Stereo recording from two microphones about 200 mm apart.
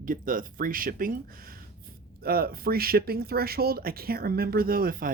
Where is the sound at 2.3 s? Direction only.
50° right (ahead or behind).